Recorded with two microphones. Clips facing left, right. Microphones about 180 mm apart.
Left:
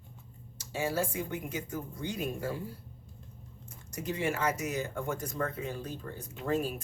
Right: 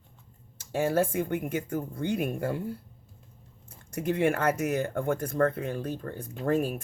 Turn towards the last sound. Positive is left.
turn(degrees=-55)  # may be behind; listen again after turning